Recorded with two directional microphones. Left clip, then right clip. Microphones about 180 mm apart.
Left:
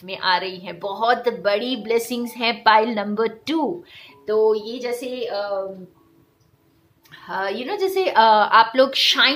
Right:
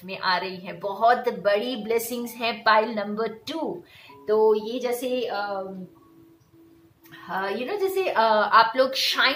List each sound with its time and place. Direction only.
0.0 s a woman's voice: 45° left (ahead or behind)
4.3 s a woman's voice: 35° left (ahead or behind)
7.1 s a woman's voice: 40° left (ahead or behind)